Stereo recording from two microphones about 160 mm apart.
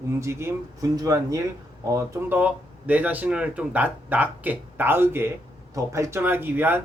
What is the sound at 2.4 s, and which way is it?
Speech, 10° right (ahead or behind).